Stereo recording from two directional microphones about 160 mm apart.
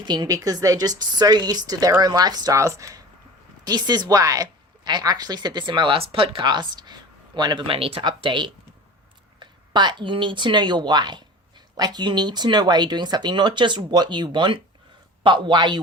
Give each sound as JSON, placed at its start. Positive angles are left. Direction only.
{"t": 0.0, "sound": "speech", "side_deg": -25}